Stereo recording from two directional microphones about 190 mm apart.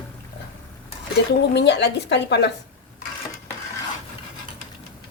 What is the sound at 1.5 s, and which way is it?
Speech, 65° left (ahead or behind).